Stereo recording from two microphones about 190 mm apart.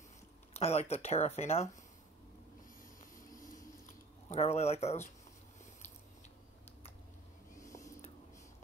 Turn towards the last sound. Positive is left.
turn(degrees=15)  # may be behind; listen again after turning